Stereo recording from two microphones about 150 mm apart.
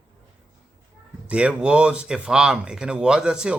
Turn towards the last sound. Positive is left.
turn(degrees=-5)  # may be behind; listen again after turning